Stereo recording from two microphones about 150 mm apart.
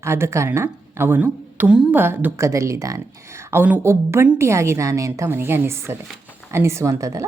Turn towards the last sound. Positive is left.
turn(degrees=-20)  # may be behind; listen again after turning